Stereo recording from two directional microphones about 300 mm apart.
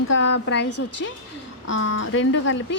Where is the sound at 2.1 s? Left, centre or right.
Left.